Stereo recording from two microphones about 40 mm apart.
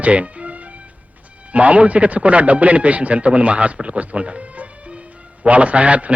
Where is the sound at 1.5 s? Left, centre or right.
Right.